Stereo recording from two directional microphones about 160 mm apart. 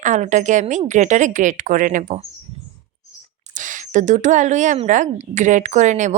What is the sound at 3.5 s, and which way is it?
A woman's voice, 55° right (ahead or behind).